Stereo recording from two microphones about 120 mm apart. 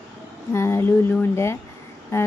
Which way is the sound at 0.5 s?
20° left (ahead or behind).